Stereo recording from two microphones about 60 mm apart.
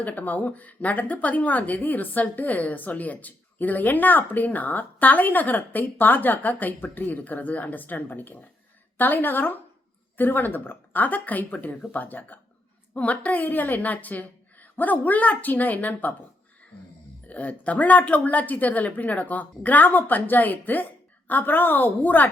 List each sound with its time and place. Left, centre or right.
0.0 s a woman's voice: left
17.2 s a woman's voice: left